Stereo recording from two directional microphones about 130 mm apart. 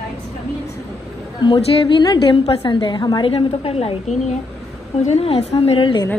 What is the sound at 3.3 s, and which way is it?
A woman's voice, 50° left (ahead or behind).